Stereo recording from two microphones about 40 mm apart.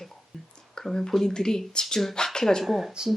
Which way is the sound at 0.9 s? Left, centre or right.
Centre.